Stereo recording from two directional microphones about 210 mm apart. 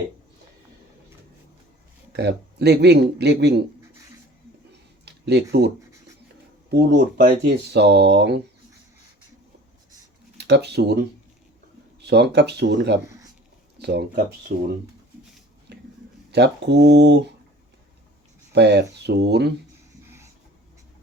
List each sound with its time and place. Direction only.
2.1 s speech: 50° right (ahead or behind)
5.0 s speech: 50° right (ahead or behind)
10.3 s speech: 50° right (ahead or behind)
15.7 s a sound: 55° right (ahead or behind)
16.3 s speech: 55° right (ahead or behind)
18.5 s speech: 50° right (ahead or behind)